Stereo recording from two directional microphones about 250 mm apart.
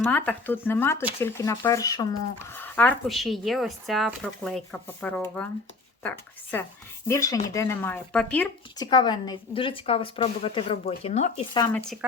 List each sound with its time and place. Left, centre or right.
0.0 s speech: centre
8.8 s a woman's voice: centre